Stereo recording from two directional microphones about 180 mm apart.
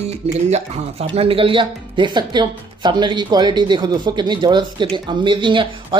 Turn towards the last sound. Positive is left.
turn(degrees=-25)  # may be behind; listen again after turning